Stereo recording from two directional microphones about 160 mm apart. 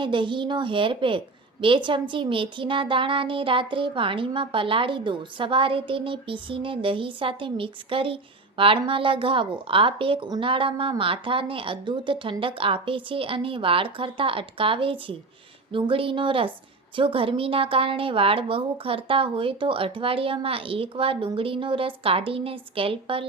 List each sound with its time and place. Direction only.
0.0 s speech: 30° right (ahead or behind)